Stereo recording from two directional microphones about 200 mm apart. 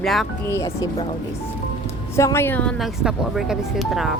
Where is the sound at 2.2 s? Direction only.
15° left (ahead or behind).